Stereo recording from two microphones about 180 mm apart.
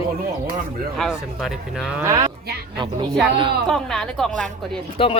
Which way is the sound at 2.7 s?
25° right (ahead or behind).